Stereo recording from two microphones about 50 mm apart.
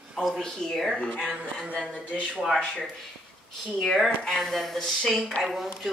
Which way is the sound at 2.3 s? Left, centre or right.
Centre.